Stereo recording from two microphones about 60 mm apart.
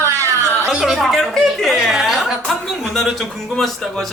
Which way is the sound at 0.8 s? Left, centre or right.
Centre.